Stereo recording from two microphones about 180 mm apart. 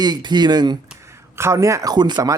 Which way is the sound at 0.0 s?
25° right (ahead or behind).